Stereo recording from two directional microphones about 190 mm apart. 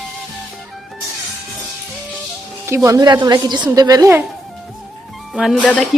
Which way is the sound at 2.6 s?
15° right (ahead or behind).